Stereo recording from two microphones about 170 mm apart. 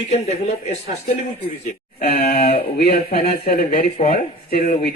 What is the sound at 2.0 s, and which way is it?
Speech, 65° left (ahead or behind).